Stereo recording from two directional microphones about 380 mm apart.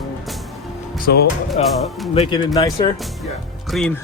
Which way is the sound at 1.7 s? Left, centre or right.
Centre.